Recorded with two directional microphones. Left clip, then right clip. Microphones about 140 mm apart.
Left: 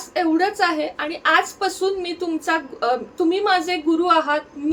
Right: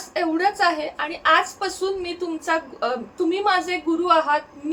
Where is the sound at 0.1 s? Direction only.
25° left (ahead or behind).